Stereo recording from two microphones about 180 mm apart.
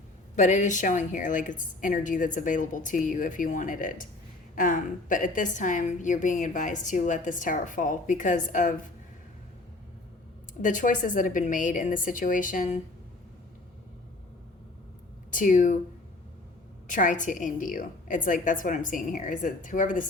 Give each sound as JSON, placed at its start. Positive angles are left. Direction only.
{"t": 0.3, "sound": "a woman's voice", "side_deg": 45}
{"t": 10.6, "sound": "a woman's voice", "side_deg": 45}
{"t": 15.3, "sound": "speech", "side_deg": 45}
{"t": 16.8, "sound": "a woman's voice", "side_deg": 45}